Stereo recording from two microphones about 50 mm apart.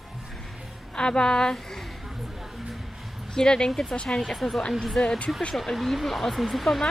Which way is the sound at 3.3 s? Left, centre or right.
Centre.